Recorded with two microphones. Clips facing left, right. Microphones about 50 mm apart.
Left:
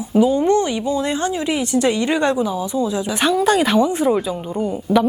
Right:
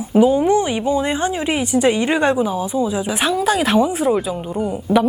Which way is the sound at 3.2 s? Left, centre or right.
Centre.